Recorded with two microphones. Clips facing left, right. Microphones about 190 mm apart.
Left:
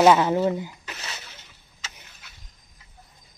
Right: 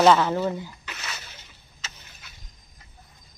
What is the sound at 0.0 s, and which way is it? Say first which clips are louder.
Speech: left 1 dB; 15° left (ahead or behind).